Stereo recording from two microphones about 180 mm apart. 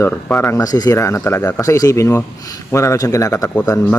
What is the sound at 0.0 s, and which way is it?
A man's voice, 15° left (ahead or behind).